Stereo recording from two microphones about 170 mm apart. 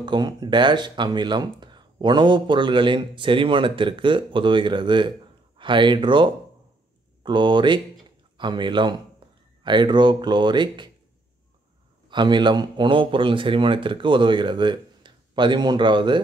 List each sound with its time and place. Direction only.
0.0 s speech: 25° right (ahead or behind)
12.1 s speech: 25° right (ahead or behind)